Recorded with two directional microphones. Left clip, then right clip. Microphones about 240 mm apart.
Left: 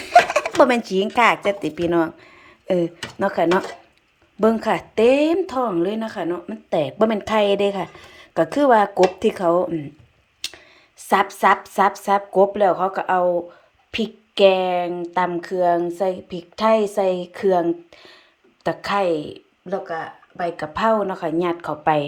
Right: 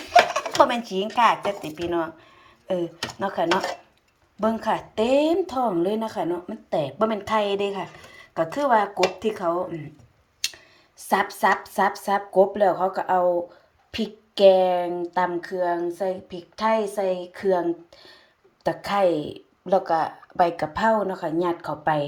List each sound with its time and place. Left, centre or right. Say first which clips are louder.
0.0 s a sound: left 3 dB; left
0.9 s speech: left 3 dB; left
11.1 s a woman's voice: left 4 dB; centre
20.7 s speech: left 4 dB; centre